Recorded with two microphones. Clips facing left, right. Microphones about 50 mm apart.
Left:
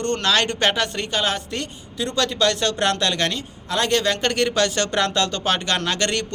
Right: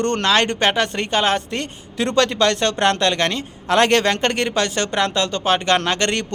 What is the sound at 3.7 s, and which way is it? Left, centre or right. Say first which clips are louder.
Speech: right 5 dB; right.